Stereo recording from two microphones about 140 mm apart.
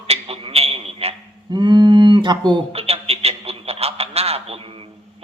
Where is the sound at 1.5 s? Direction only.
35° right (ahead or behind).